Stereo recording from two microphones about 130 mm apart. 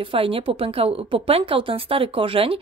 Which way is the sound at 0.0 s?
45° right (ahead or behind).